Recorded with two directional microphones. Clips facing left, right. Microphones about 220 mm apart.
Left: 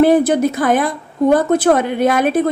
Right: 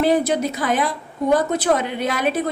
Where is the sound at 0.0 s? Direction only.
50° left (ahead or behind).